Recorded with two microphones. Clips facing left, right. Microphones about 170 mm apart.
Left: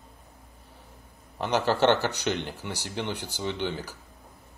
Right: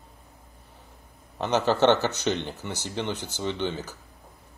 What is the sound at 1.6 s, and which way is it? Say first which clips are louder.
Speech: right 2 dB; 20° right (ahead or behind).